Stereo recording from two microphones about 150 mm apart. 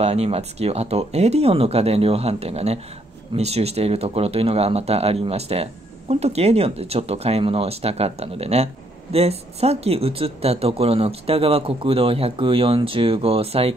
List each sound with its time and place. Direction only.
0.0 s speech: 45° right (ahead or behind)